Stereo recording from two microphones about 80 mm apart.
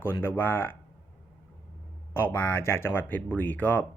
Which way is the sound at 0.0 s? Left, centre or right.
Left.